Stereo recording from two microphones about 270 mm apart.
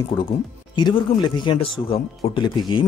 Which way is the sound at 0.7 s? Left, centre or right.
Centre.